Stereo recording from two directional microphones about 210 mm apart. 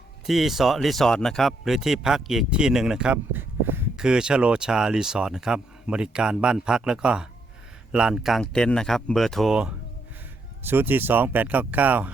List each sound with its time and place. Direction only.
0.3 s speech: centre (ahead or behind)